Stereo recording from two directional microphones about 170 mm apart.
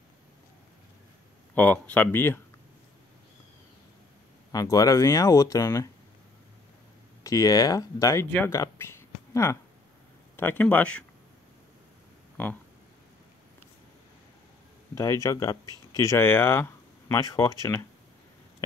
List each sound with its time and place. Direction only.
1.5 s speech: 10° left (ahead or behind)
4.5 s speech: 20° left (ahead or behind)
7.2 s speech: 20° left (ahead or behind)
12.4 s speech: 10° left (ahead or behind)
15.0 s speech: 15° left (ahead or behind)